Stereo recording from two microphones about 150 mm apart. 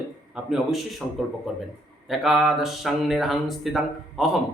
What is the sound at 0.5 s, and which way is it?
Speech, centre (ahead or behind).